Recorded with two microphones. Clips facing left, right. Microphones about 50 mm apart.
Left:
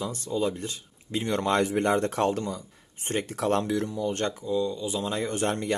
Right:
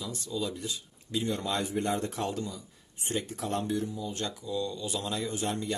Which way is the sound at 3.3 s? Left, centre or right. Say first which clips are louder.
Left 8 dB; left.